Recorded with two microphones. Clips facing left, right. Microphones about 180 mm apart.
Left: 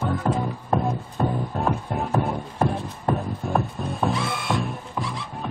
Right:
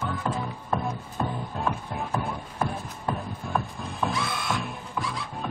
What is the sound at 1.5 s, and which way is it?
Music, 40° left (ahead or behind).